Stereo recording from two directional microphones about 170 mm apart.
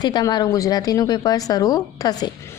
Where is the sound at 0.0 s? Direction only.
25° left (ahead or behind).